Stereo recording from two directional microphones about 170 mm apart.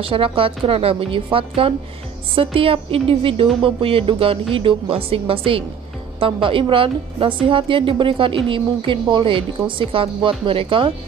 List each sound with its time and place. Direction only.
0.0 s speech: 30° right (ahead or behind)